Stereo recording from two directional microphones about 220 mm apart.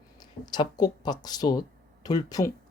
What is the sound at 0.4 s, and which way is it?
A woman's voice, 20° left (ahead or behind).